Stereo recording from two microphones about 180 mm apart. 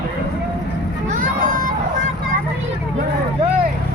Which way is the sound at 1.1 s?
50° right (ahead or behind).